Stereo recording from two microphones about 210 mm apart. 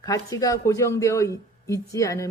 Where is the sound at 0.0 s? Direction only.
15° left (ahead or behind).